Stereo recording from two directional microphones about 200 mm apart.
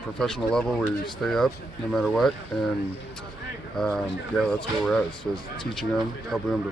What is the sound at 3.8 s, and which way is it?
Speech, 5° left (ahead or behind).